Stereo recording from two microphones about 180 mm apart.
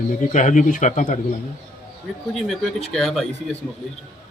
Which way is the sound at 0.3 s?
45° left (ahead or behind).